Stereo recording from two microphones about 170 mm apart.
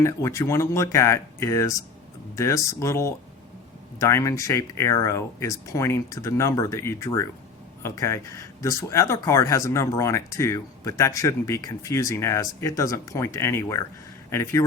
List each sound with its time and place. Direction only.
0.0 s speech: 15° left (ahead or behind)